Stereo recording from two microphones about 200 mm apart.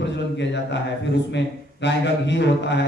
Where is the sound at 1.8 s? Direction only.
60° left (ahead or behind).